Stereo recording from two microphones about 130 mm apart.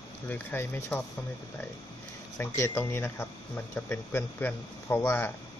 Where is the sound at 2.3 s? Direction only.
20° left (ahead or behind).